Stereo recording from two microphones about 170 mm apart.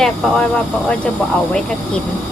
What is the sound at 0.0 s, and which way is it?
Speech, 5° left (ahead or behind).